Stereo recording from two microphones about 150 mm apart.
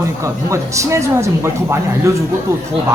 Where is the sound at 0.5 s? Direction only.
20° right (ahead or behind).